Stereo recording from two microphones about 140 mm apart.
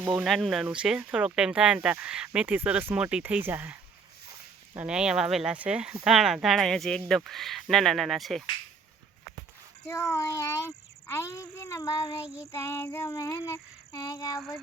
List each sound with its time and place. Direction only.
0.0 s speech: 5° right (ahead or behind)
9.8 s child singing: 20° left (ahead or behind)
12.2 s speech: 10° right (ahead or behind)
12.5 s child singing: 20° left (ahead or behind)